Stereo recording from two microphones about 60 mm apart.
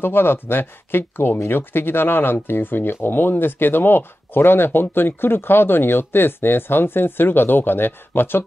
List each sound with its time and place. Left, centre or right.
0.0 s speech: left